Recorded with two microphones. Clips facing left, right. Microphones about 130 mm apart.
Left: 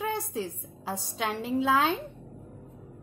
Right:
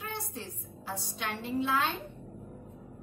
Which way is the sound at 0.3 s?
90° left.